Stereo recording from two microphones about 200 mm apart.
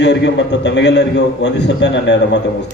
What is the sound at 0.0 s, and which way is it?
A man's voice, 60° left (ahead or behind).